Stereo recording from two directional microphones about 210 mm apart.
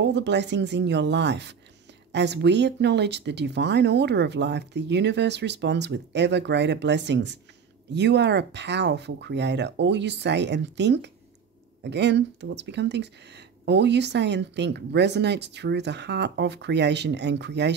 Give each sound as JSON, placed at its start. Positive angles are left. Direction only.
{"t": 0.0, "sound": "speech", "side_deg": -55}